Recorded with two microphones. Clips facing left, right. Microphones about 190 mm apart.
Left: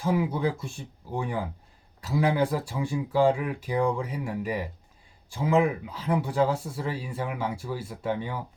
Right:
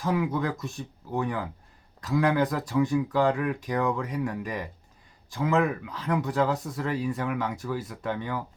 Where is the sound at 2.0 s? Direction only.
10° left (ahead or behind).